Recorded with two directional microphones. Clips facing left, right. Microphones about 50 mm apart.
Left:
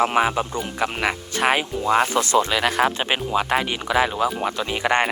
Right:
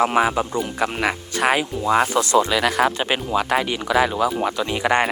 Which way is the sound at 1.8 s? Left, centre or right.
Right.